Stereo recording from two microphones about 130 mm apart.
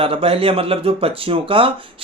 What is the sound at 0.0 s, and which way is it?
Speech, 45° right (ahead or behind).